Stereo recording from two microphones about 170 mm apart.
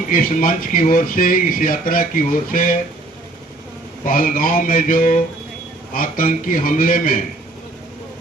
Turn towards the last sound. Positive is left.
turn(degrees=55)  # may be behind; listen again after turning